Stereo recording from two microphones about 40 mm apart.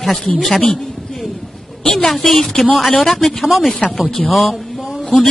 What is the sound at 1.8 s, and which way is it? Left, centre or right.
A woman's voice, centre.